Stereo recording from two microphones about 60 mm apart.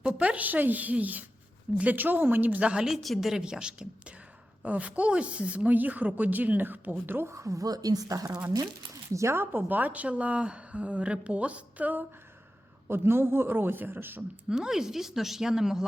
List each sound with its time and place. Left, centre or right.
0.1 s a woman's voice: right
2.8 s a woman's voice: centre; by 7.3 s right
7.3 s speech: right
9.1 s speech: right
9.4 s a woman's voice: right
12.9 s a man's voice: right
14.5 s speech: centre